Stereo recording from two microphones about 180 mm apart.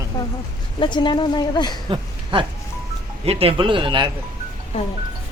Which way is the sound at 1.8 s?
30° right (ahead or behind).